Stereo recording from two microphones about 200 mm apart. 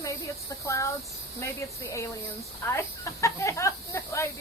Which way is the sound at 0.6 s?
15° left (ahead or behind).